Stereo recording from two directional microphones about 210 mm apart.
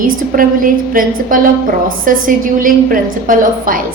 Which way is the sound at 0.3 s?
40° right (ahead or behind).